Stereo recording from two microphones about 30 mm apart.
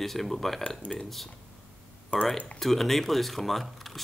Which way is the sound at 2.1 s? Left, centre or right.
Left.